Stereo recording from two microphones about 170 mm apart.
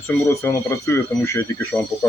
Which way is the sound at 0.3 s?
15° left (ahead or behind).